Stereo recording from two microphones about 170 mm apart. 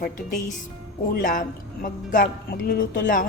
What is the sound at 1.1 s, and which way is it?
A woman's voice, 50° left (ahead or behind).